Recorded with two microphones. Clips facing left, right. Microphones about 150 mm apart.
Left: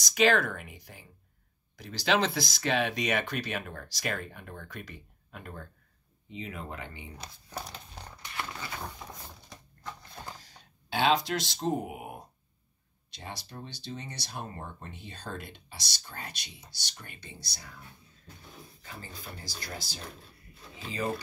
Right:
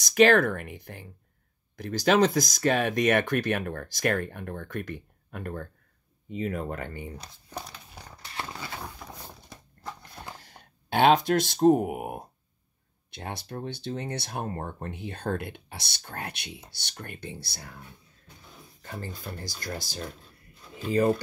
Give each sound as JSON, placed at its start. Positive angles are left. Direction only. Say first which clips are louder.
{"t": 0.0, "sound": "speech", "louder": "right 6 dB", "side_deg": -50}
{"t": 10.3, "sound": "speech", "louder": "right 3 dB", "side_deg": -60}
{"t": 18.8, "sound": "speech", "louder": "right 9 dB", "side_deg": -50}